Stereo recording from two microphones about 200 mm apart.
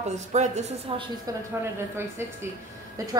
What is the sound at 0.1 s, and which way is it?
Speech, 35° right (ahead or behind).